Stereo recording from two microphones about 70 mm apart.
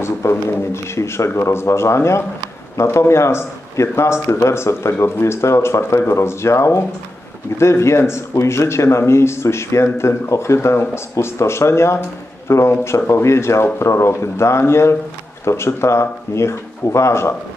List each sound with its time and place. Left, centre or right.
0.0 s speech: left